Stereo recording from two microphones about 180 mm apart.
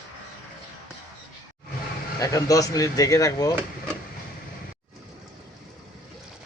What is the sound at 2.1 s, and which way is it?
Speech, 20° left (ahead or behind).